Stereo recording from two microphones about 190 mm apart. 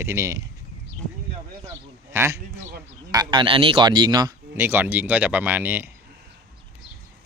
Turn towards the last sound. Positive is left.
turn(degrees=-10)  # may be behind; listen again after turning